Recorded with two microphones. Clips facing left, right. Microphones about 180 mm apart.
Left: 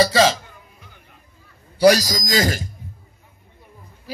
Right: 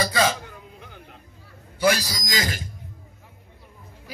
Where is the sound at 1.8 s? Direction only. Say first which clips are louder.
Left 8 dB; 40° left (ahead or behind).